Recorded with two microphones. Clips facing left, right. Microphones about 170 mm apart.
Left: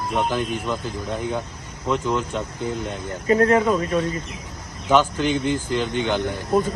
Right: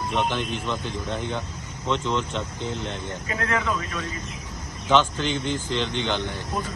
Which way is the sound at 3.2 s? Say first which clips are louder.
Left 11 dB; 35° left (ahead or behind).